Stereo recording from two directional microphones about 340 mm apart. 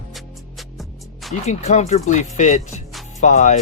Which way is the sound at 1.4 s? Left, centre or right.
Centre.